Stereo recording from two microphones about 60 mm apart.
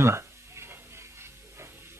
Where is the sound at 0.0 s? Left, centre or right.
Right.